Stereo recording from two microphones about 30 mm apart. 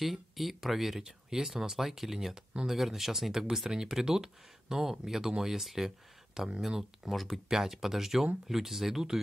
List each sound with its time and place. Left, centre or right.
0.0 s speech: centre
1.0 s speech: centre
7.1 s speech: centre
7.4 s speech: centre